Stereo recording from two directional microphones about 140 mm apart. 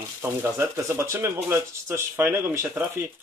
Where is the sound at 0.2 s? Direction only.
20° right (ahead or behind).